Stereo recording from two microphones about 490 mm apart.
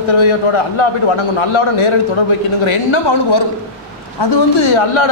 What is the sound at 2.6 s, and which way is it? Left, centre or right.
A man's voice, left.